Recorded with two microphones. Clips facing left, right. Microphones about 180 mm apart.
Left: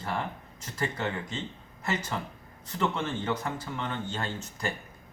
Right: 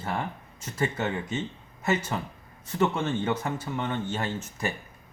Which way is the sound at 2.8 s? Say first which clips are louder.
Right 4 dB; 20° right (ahead or behind).